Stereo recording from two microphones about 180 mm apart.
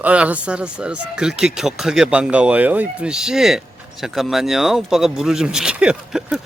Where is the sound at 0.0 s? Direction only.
5° right (ahead or behind).